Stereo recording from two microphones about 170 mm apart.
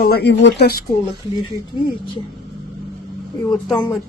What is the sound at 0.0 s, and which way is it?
Speech, 70° left (ahead or behind).